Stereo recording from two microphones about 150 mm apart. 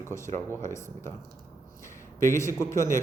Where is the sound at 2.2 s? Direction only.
20° left (ahead or behind).